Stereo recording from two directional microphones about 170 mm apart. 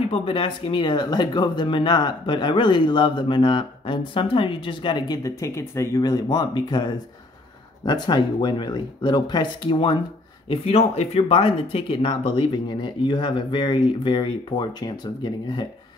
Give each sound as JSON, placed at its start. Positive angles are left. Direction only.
{"t": 0.1, "sound": "speech", "side_deg": 30}